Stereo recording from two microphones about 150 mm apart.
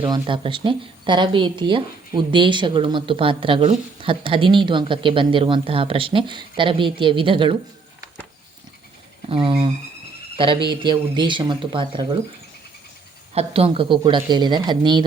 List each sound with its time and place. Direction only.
0.1 s a woman's voice: 35° right (ahead or behind)
9.3 s a woman's voice: 40° right (ahead or behind)
13.3 s a woman's voice: 40° right (ahead or behind)